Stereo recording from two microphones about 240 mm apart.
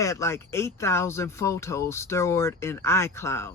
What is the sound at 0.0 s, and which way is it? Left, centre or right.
Speech, centre.